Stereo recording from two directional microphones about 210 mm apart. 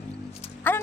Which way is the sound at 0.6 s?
10° left (ahead or behind).